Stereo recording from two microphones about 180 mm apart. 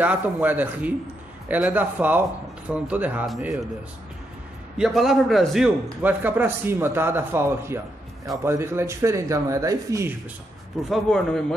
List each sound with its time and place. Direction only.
0.0 s a man's voice: 10° right (ahead or behind)
4.7 s a man's voice: centre (ahead or behind)
6.0 s a man's voice: 10° right (ahead or behind)
10.9 s a man's voice: 5° left (ahead or behind)